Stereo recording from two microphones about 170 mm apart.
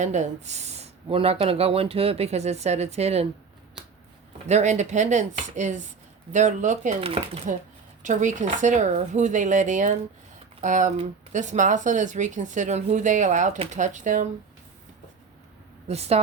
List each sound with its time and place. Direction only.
0.0 s speech: 45° right (ahead or behind)
4.4 s speech: 40° right (ahead or behind)
15.9 s speech: 40° right (ahead or behind)